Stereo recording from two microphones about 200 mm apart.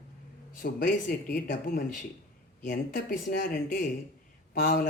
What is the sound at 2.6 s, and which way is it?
Speech, 40° left (ahead or behind).